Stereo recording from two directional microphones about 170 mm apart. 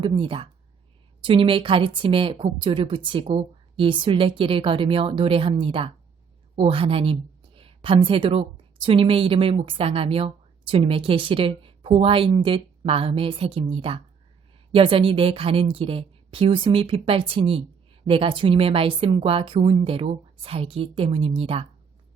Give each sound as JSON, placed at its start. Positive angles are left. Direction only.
{"t": 0.0, "sound": "a woman's voice", "side_deg": -30}